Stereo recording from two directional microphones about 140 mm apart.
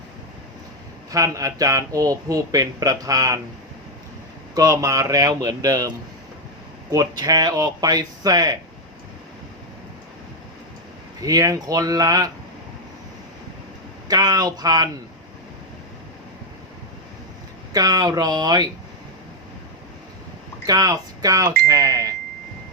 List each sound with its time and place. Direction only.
1.1 s speech: 25° right (ahead or behind)
4.5 s speech: 25° right (ahead or behind)
6.9 s speech: 25° right (ahead or behind)
11.2 s speech: 25° right (ahead or behind)
14.1 s speech: 25° right (ahead or behind)
17.7 s speech: 25° right (ahead or behind)
20.7 s speech: 25° right (ahead or behind)